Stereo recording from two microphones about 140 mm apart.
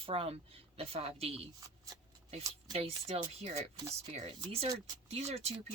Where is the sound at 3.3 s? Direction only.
50° right (ahead or behind).